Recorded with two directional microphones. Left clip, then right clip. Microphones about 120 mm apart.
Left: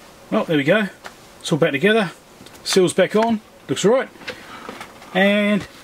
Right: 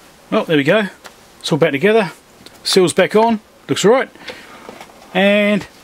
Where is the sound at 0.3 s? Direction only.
40° right (ahead or behind).